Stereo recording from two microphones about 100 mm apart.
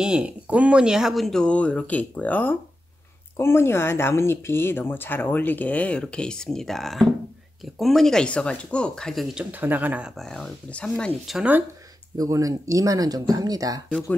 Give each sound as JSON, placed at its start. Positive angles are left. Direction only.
{"t": 0.0, "sound": "speech", "side_deg": -10}
{"t": 9.4, "sound": "speech", "side_deg": -15}
{"t": 10.1, "sound": "speech", "side_deg": 5}
{"t": 11.3, "sound": "speech", "side_deg": 0}
{"t": 12.2, "sound": "speech", "side_deg": -35}